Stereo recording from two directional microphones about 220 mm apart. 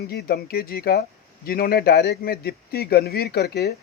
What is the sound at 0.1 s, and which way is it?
A man's voice, 45° left (ahead or behind).